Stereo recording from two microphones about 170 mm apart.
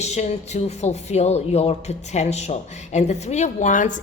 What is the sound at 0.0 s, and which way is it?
Speech, 40° left (ahead or behind).